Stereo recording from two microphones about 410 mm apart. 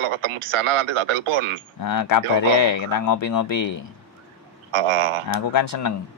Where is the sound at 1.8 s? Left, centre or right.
Left.